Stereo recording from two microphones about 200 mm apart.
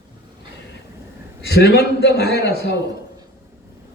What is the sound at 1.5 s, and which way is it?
A man's voice, 55° left (ahead or behind).